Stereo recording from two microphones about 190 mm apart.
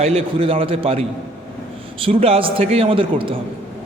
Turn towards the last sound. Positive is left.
turn(degrees=-30)  # may be behind; listen again after turning